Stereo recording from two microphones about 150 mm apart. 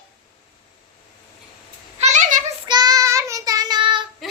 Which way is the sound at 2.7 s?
25° right (ahead or behind).